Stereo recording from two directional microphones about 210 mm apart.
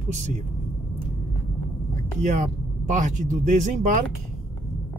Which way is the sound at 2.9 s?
35° right (ahead or behind).